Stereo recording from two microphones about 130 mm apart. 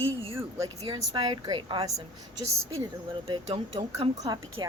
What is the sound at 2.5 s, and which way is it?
Speech, 20° right (ahead or behind).